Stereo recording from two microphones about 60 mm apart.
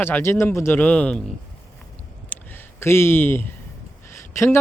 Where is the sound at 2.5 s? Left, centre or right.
Left.